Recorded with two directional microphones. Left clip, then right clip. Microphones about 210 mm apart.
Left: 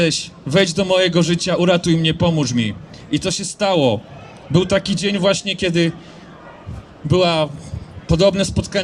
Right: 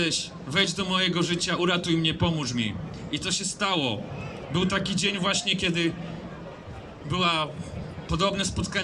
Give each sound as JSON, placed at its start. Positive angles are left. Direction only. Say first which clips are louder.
{"t": 0.0, "sound": "a man's voice", "louder": "left 8 dB", "side_deg": 40}
{"t": 7.1, "sound": "a man's voice", "louder": "left 9 dB", "side_deg": 40}